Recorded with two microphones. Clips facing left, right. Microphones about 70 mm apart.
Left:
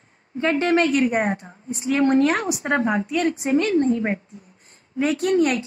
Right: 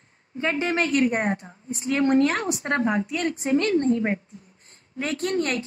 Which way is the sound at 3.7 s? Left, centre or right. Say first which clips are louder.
Left 2 dB; left.